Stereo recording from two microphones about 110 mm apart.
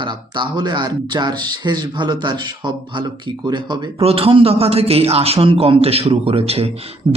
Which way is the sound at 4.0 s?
60° right (ahead or behind).